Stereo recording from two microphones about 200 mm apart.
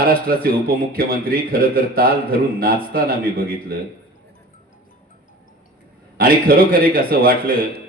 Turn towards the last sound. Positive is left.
turn(degrees=-45)  # may be behind; listen again after turning